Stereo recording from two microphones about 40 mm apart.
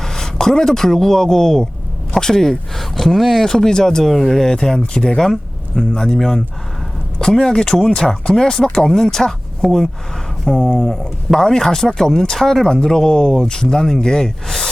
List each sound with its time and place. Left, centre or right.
0.0 s speech: centre
5.3 s a sound: centre
5.9 s speech: centre